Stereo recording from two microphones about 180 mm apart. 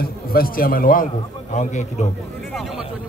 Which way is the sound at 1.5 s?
40° left (ahead or behind).